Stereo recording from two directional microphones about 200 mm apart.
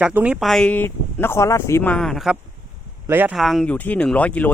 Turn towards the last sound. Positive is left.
turn(degrees=5)  # may be behind; listen again after turning